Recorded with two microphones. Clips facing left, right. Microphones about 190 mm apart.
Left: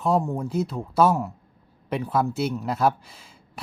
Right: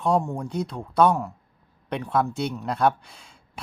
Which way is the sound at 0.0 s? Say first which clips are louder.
Even; centre (ahead or behind).